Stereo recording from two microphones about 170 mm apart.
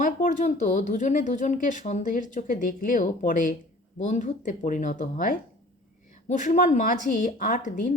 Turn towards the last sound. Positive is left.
turn(degrees=50)  # may be behind; listen again after turning